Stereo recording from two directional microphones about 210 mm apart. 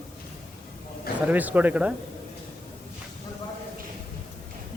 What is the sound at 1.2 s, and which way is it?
Speech, 5° right (ahead or behind).